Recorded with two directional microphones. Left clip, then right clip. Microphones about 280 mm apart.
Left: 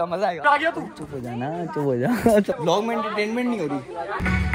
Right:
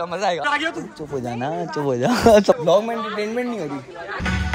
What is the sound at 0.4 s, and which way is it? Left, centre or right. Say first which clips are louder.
Speech: left 2 dB; centre.